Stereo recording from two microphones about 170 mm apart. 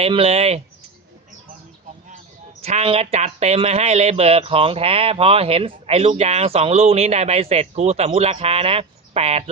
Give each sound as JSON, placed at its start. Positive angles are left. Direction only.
{"t": 0.0, "sound": "speech", "side_deg": -35}
{"t": 2.6, "sound": "speech", "side_deg": -40}